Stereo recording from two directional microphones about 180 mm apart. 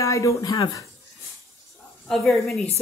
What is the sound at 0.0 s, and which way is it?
Speech, 15° left (ahead or behind).